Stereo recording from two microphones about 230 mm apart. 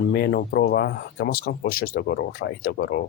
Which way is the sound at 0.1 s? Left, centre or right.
Left.